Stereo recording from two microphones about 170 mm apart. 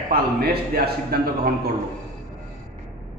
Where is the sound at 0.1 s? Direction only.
65° right (ahead or behind).